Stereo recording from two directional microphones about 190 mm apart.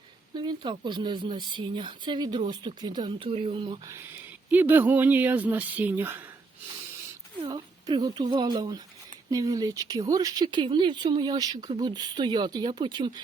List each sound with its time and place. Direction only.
0.3 s speech: 25° right (ahead or behind)
3.9 s speech: 10° right (ahead or behind)
7.4 s a woman's voice: 20° right (ahead or behind)